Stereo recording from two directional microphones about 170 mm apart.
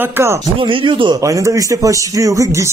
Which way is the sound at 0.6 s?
30° right (ahead or behind).